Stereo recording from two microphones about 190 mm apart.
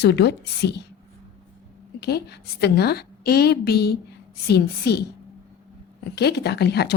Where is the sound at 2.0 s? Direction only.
60° left (ahead or behind).